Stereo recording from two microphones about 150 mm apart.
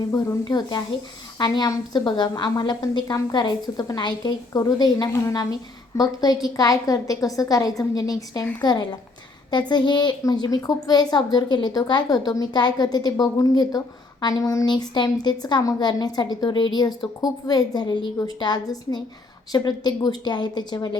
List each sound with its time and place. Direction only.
0.1 s a woman's voice: 25° left (ahead or behind)